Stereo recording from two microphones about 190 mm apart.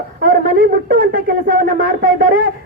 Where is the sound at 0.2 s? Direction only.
50° right (ahead or behind).